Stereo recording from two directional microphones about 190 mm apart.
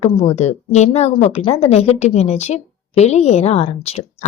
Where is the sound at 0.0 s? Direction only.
35° left (ahead or behind).